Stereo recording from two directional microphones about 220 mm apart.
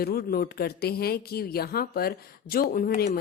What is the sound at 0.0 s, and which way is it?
Speech, 45° left (ahead or behind).